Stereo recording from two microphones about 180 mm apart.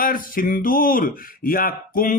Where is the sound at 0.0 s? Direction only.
50° left (ahead or behind).